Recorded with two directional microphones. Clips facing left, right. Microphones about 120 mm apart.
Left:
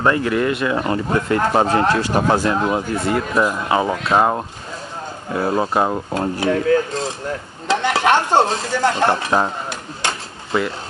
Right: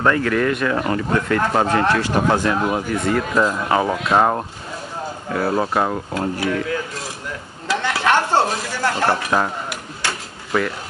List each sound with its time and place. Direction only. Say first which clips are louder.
0.0 s speech: even; 20° left (ahead or behind)
1.7 s speech: left 1 dB; 35° left (ahead or behind)
3.3 s speech: even; 10° left (ahead or behind)
5.3 s speech: left 1 dB; 20° left (ahead or behind)
6.5 s speech: left 7 dB; 40° left (ahead or behind)
7.6 s stir: left 3 dB; 25° left (ahead or behind)